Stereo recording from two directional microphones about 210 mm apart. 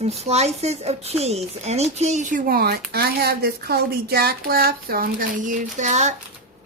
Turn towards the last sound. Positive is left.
turn(degrees=-35)  # may be behind; listen again after turning